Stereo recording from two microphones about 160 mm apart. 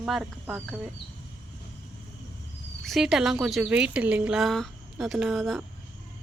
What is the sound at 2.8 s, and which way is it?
A woman's voice, centre (ahead or behind).